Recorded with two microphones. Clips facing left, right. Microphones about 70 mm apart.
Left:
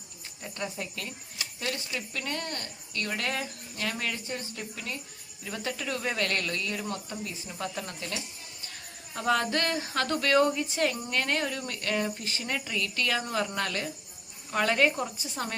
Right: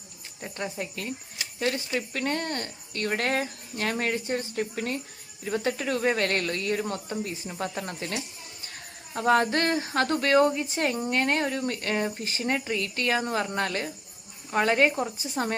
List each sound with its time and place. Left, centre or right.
0.4 s speech: right
5.5 s speech: right